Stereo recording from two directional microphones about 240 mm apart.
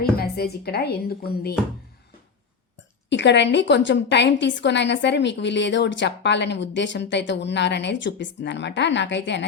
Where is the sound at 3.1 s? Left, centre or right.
Left.